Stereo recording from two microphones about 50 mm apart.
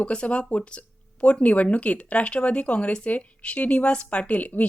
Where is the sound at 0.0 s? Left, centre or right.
Left.